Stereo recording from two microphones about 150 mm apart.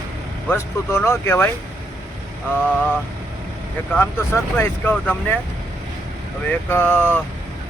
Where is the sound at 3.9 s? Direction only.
15° left (ahead or behind).